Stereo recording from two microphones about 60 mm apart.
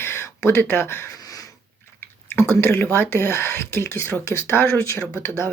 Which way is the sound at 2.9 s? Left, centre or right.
Left.